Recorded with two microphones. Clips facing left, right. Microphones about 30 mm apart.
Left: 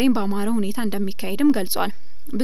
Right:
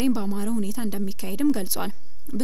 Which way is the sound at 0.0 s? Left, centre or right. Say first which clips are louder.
Left 5 dB; left.